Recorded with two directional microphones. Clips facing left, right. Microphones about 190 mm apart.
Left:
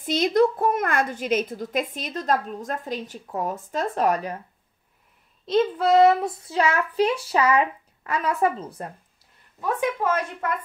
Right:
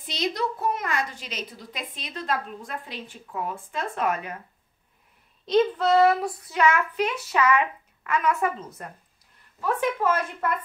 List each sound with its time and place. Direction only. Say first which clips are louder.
0.0 s a woman's voice: left 9 dB; 50° left (ahead or behind)
5.4 s a child's voice: even; 5° left (ahead or behind); by 8.9 s 30° left (ahead or behind)
9.6 s speech: even; 10° left (ahead or behind)